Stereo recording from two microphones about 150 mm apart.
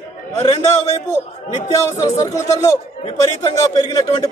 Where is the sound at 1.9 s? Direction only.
20° left (ahead or behind).